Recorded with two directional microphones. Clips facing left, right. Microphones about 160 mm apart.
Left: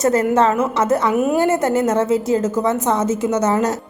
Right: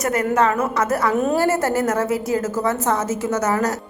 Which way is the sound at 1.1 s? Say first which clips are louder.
Left 2 dB; 10° left (ahead or behind).